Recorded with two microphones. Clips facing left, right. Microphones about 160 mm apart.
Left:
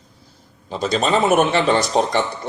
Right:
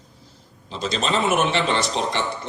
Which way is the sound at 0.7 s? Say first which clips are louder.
Left 5 dB; 45° left (ahead or behind).